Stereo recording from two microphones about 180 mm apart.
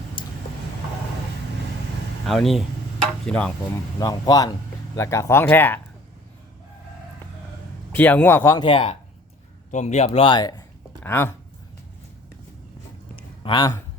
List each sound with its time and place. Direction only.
0.2 s a sound: 25° left (ahead or behind)
2.2 s speech: centre (ahead or behind)
4.0 s speech: 20° left (ahead or behind)
7.9 s speech: 10° left (ahead or behind)
8.6 s speech: 30° left (ahead or behind)
11.0 s speech: 15° left (ahead or behind)
13.4 s speech: 25° left (ahead or behind)